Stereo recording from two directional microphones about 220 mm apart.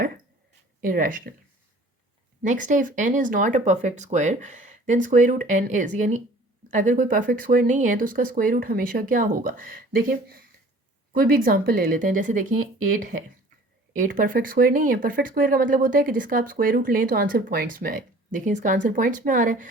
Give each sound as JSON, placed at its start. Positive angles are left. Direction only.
{"t": 0.8, "sound": "speech", "side_deg": -40}
{"t": 2.4, "sound": "speech", "side_deg": -35}